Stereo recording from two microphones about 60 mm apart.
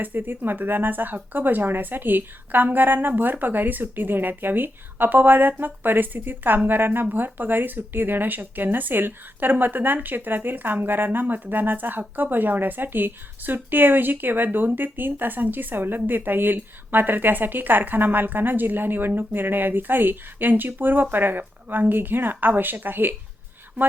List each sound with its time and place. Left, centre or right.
0.0 s speech: right